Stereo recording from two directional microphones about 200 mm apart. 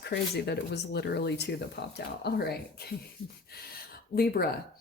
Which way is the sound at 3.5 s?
50° left (ahead or behind).